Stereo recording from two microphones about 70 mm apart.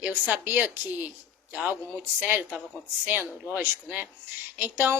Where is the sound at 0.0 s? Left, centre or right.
Right.